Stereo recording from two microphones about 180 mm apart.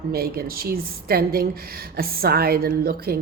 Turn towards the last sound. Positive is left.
turn(degrees=-60)  # may be behind; listen again after turning